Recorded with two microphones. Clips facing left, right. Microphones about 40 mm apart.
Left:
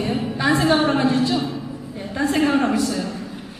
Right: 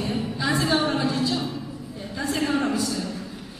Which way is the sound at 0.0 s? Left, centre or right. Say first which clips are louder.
Left 5 dB; left.